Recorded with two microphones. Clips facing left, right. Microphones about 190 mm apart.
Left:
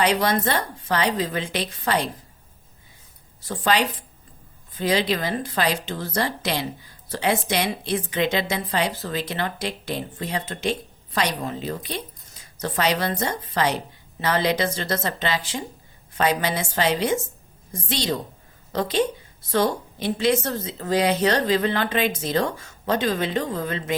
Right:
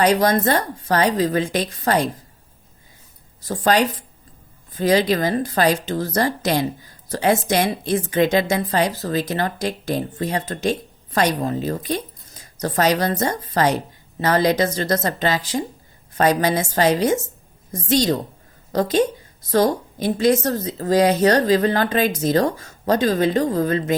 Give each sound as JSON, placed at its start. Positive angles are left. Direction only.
{"t": 0.0, "sound": "a woman's voice", "side_deg": -40}
{"t": 3.4, "sound": "a woman's voice", "side_deg": -40}